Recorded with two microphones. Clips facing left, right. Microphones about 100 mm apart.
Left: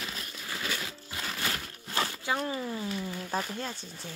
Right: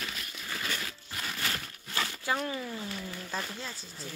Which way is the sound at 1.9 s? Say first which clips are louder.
Left 1 dB; 30° left (ahead or behind).